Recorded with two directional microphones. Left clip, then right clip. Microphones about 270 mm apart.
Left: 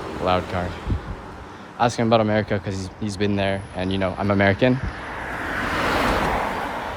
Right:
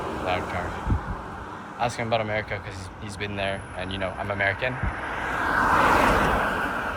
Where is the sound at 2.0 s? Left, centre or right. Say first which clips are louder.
Left 7 dB; left.